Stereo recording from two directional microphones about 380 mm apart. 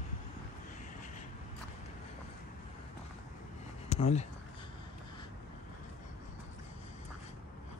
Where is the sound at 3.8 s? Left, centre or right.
Centre.